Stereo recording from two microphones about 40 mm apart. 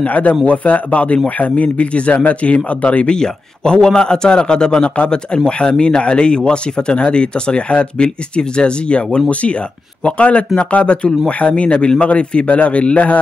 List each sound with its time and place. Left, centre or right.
0.0 s speech: left
3.1 s speech: centre; by 13.2 s left